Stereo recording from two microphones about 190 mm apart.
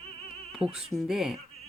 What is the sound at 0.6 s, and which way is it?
Speech, 5° right (ahead or behind).